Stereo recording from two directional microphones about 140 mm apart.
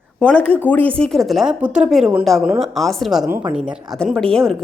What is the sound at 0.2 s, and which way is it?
A woman's voice, 10° left (ahead or behind).